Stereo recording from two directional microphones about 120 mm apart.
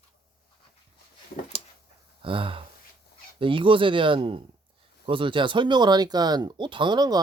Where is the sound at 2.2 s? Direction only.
45° right (ahead or behind).